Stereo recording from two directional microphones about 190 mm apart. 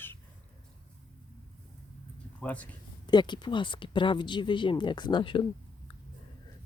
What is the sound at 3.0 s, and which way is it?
Speech, 25° left (ahead or behind).